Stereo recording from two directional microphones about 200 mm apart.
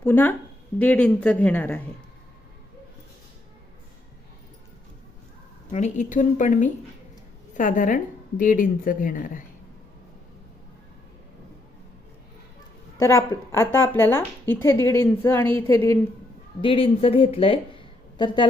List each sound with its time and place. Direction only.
0.0 s a woman's voice: 10° left (ahead or behind)
5.7 s a woman's voice: 35° left (ahead or behind)
13.0 s a woman's voice: 15° left (ahead or behind)
16.6 s speech: 25° left (ahead or behind)